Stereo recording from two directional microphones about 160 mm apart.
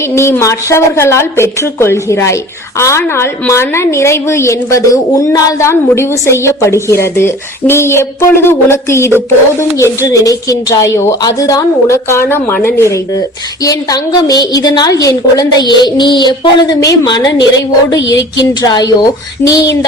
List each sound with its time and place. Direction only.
0.1 s a woman's voice: 15° left (ahead or behind)
17.3 s a woman's voice: 90° left
18.1 s a woman's voice: 25° left (ahead or behind)